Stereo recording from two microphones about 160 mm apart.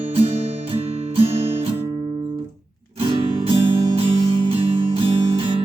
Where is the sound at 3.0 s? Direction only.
35° right (ahead or behind).